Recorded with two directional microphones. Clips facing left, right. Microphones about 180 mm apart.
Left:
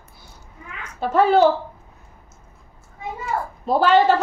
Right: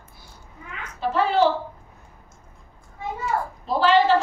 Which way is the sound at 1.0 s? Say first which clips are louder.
Left 5 dB; 45° left (ahead or behind).